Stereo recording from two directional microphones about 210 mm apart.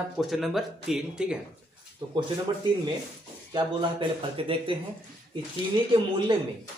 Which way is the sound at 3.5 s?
25° right (ahead or behind).